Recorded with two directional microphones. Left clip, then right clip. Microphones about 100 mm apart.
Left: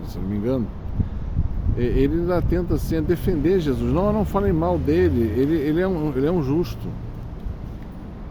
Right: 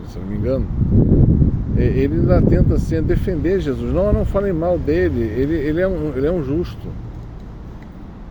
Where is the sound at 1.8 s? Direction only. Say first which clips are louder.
Right 2 dB; 20° left (ahead or behind).